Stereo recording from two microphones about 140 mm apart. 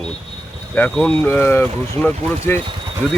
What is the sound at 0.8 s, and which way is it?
Speech, 5° left (ahead or behind).